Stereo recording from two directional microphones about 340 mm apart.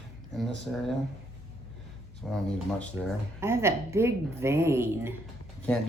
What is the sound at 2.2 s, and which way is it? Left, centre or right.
Speech, centre.